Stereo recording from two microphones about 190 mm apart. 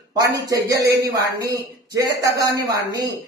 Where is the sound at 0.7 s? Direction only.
55° right (ahead or behind).